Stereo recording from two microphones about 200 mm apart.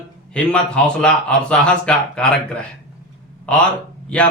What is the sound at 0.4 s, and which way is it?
A man's voice, 5° left (ahead or behind).